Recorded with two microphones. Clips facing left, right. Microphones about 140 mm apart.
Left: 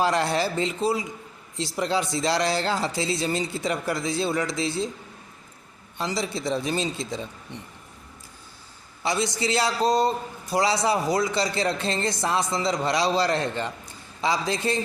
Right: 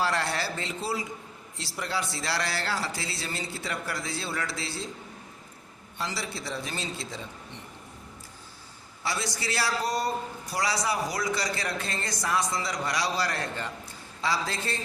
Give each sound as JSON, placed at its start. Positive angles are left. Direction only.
{"t": 0.0, "sound": "a man's voice", "side_deg": 20}
{"t": 6.0, "sound": "a man's voice", "side_deg": 20}
{"t": 9.0, "sound": "a man's voice", "side_deg": 20}